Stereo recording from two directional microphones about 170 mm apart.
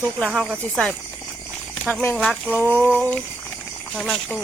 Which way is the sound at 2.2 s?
Centre (ahead or behind).